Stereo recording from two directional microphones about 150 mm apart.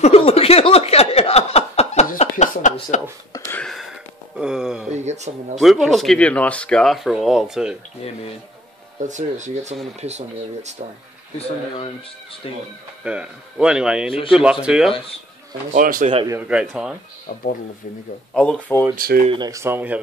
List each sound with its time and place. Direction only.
0.0 s a sound: 40° left (ahead or behind)
3.3 s a sound: 20° left (ahead or behind)
3.6 s a sound: centre (ahead or behind)
4.9 s a sound: 50° right (ahead or behind)
5.6 s speech: centre (ahead or behind)
9.0 s speech: 55° right (ahead or behind)
13.0 s speech: 5° right (ahead or behind)
15.7 s speech: 60° right (ahead or behind)
16.4 s speech: 5° right (ahead or behind)
18.3 s speech: 5° left (ahead or behind)
18.9 s speech: 80° right
19.2 s speech: 30° right (ahead or behind); by 20.0 s 10° right (ahead or behind)